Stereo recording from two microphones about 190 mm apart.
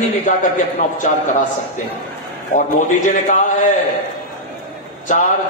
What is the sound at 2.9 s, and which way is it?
Speech, 40° left (ahead or behind).